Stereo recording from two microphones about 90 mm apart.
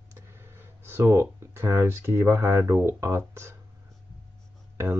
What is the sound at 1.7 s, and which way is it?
Speech, 30° right (ahead or behind).